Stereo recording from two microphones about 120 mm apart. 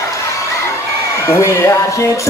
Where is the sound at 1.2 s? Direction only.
25° left (ahead or behind).